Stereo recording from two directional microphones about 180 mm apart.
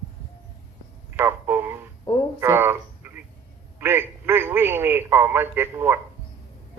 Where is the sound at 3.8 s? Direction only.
10° right (ahead or behind).